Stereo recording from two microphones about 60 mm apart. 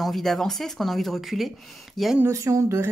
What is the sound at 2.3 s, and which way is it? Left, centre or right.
Speech, right.